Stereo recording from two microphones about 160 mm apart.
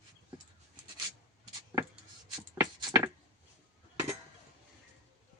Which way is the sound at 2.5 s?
15° right (ahead or behind).